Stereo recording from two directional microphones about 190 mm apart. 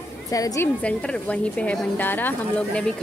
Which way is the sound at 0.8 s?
5° left (ahead or behind).